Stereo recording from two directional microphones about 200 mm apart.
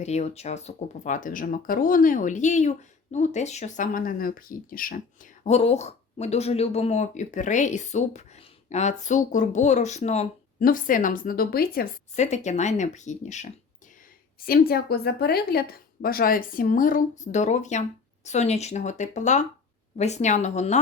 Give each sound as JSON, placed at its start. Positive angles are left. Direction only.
{"t": 0.0, "sound": "speech", "side_deg": 35}
{"t": 14.4, "sound": "speech", "side_deg": 50}